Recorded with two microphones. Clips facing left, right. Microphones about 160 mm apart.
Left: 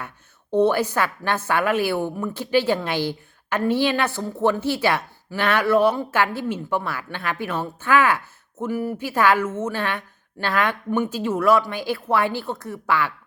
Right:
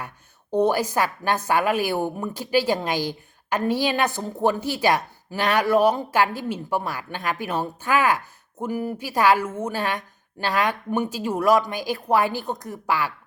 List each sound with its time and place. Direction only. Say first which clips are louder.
0.5 s a woman's voice: left 2 dB; 10° right (ahead or behind)